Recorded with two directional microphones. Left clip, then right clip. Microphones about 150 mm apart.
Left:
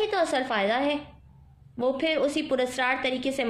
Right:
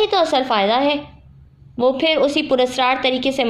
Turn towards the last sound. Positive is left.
turn(degrees=-15)  # may be behind; listen again after turning